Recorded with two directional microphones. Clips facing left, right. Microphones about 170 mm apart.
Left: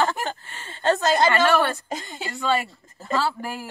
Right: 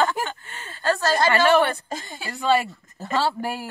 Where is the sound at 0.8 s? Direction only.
20° left (ahead or behind).